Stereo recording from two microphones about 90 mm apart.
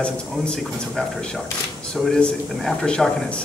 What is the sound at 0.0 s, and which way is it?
Speech, 5° left (ahead or behind).